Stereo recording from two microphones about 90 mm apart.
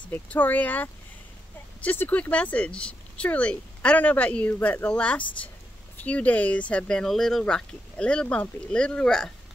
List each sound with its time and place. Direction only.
0.1 s speech: 20° left (ahead or behind)